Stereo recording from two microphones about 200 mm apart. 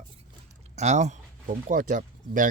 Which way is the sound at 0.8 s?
35° right (ahead or behind).